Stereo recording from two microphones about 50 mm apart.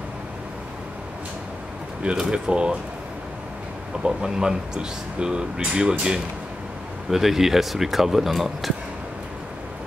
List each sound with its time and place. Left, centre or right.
2.1 s speech: centre
4.0 s speech: centre